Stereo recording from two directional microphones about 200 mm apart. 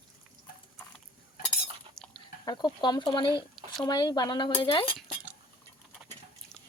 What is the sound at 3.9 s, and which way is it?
Speech, 20° left (ahead or behind).